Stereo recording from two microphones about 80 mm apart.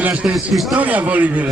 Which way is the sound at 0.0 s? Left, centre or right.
Centre.